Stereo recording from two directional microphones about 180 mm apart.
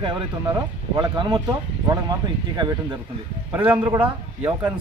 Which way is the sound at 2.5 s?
25° right (ahead or behind).